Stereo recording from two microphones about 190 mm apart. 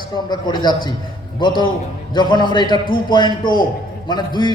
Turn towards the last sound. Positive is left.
turn(degrees=20)  # may be behind; listen again after turning